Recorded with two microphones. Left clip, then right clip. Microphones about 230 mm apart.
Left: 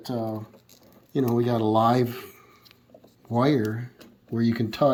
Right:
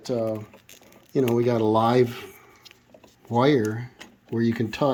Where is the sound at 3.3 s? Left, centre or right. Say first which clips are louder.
Right 3 dB; centre.